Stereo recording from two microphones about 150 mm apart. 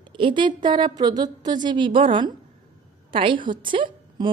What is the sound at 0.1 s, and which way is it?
A woman's voice, 35° right (ahead or behind).